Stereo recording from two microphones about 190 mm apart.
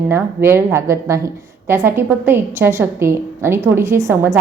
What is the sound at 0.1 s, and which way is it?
A woman's voice, 15° right (ahead or behind).